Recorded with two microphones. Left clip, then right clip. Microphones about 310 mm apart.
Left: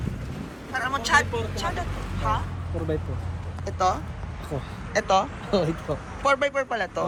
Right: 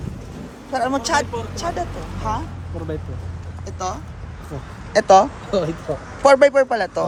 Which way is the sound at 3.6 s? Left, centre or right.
Centre.